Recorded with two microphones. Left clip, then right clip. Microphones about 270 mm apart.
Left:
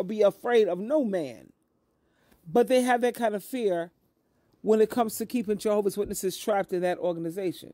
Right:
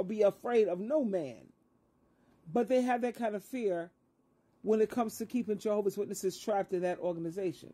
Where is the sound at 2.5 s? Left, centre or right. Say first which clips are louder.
Left 7 dB; left.